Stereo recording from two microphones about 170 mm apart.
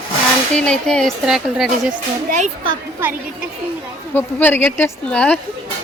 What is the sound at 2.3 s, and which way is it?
Speech, 45° right (ahead or behind).